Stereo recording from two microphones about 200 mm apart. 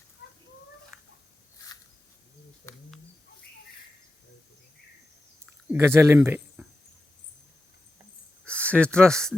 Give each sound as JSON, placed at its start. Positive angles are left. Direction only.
{"t": 2.7, "sound": "speech", "side_deg": 15}
{"t": 5.6, "sound": "speech", "side_deg": -10}
{"t": 8.4, "sound": "speech", "side_deg": 5}